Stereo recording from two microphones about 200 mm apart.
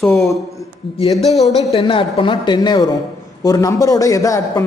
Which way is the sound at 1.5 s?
25° left (ahead or behind).